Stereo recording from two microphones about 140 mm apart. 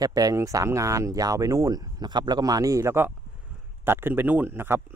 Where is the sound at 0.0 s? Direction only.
25° right (ahead or behind).